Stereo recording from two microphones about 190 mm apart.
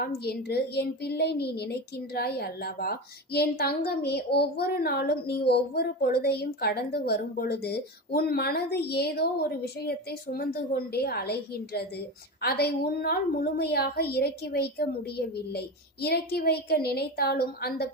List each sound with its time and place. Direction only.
0.0 s a woman's voice: 55° left (ahead or behind)